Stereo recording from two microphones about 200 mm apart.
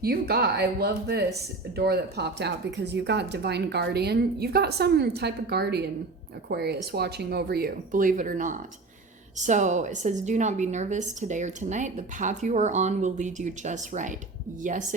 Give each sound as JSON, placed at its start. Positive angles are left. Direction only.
{"t": 0.0, "sound": "a woman's voice", "side_deg": -50}